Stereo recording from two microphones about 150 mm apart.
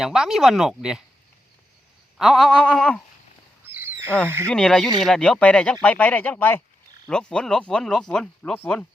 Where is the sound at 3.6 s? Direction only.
15° right (ahead or behind).